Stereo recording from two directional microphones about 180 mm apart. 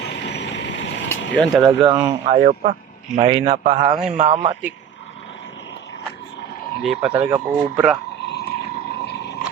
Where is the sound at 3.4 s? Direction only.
35° right (ahead or behind).